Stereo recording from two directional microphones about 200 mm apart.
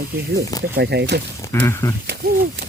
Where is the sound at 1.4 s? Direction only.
15° left (ahead or behind).